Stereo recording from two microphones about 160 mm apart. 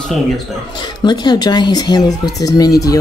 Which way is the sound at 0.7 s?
25° left (ahead or behind).